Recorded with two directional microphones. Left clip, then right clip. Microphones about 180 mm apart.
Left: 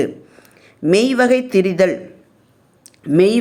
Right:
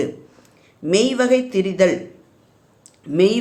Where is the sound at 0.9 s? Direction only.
35° left (ahead or behind).